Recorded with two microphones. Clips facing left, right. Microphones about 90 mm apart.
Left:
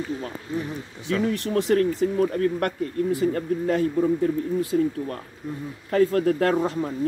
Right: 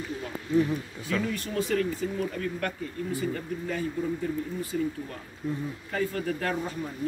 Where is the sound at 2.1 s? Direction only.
50° left (ahead or behind).